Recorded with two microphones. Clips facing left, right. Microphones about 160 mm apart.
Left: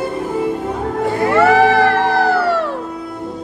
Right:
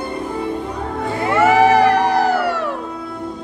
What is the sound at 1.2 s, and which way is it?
Music, 15° right (ahead or behind).